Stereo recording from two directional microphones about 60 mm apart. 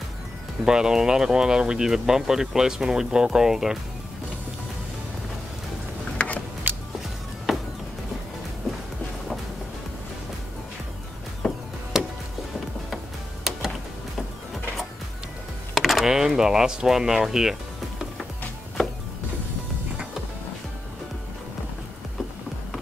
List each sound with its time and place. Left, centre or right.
0.7 s speech: centre
6.1 s a sound: left
6.7 s music: right
7.5 s music: centre
11.4 s music: centre
11.9 s music: centre
15.7 s speech: centre